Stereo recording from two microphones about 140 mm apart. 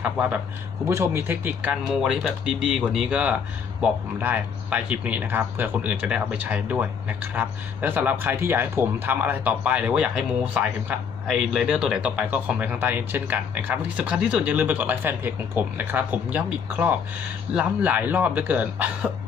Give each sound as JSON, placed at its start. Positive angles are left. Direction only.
{"t": 0.0, "sound": "speech", "side_deg": -10}